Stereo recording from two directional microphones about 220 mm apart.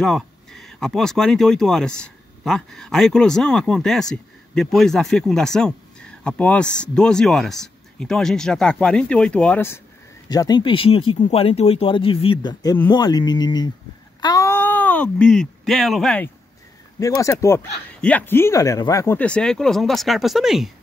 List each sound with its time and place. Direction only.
0.0 s speech: centre (ahead or behind)
17.0 s speech: 15° left (ahead or behind); by 20.7 s centre (ahead or behind)